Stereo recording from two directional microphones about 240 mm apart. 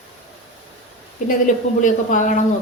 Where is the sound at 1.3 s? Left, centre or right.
Left.